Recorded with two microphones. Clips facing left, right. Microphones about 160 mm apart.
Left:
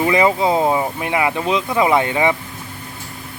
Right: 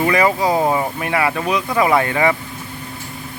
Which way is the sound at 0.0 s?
20° left (ahead or behind).